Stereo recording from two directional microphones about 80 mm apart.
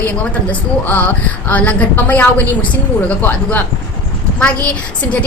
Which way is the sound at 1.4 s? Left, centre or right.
Centre.